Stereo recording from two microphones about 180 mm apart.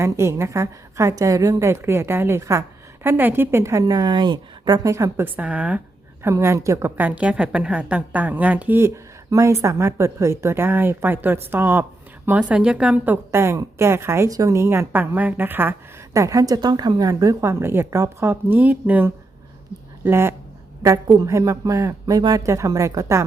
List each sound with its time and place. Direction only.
0.0 s a woman's voice: 15° right (ahead or behind)